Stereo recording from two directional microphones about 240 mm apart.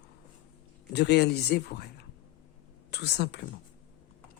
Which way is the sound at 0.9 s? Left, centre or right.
Left.